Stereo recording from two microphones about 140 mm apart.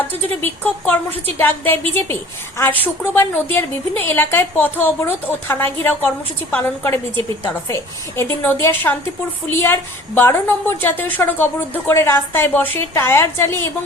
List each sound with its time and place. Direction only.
0.0 s a woman's voice: 15° left (ahead or behind)